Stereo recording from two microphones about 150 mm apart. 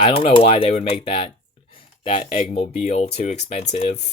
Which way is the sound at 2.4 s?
45° left (ahead or behind).